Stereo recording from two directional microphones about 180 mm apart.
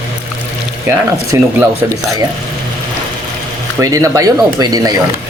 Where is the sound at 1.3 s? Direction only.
20° right (ahead or behind).